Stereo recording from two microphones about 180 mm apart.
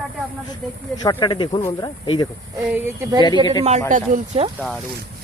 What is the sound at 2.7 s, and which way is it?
Speech, 20° right (ahead or behind).